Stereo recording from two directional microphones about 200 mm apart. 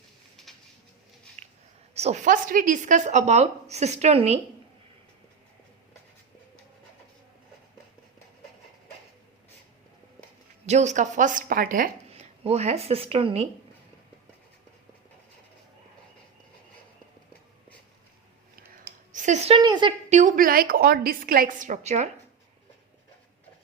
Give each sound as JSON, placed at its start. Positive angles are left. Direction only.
{"t": 0.4, "sound": "a sound", "side_deg": 0}
{"t": 1.4, "sound": "a sound", "side_deg": -35}
{"t": 2.0, "sound": "speech", "side_deg": -35}
{"t": 10.7, "sound": "speech", "side_deg": -35}
{"t": 19.1, "sound": "a woman's voice", "side_deg": -35}
{"t": 20.1, "sound": "a woman's voice", "side_deg": -40}